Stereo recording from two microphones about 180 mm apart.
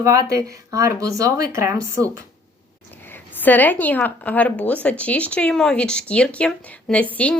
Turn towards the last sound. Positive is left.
turn(degrees=5)  # may be behind; listen again after turning